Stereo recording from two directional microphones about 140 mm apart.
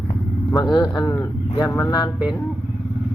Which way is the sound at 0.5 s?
30° left (ahead or behind).